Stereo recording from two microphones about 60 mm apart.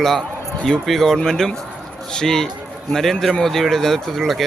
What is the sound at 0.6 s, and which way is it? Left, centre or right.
Speech, centre.